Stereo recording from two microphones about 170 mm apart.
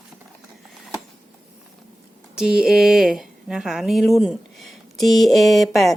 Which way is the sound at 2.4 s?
5° right (ahead or behind).